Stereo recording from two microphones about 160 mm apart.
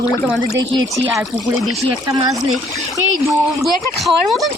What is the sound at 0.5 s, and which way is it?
Speech, 20° right (ahead or behind).